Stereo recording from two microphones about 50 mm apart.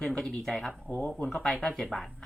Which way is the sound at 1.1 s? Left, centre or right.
Centre.